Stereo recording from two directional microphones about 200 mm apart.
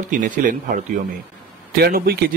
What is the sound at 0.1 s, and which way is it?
Speech, 40° right (ahead or behind).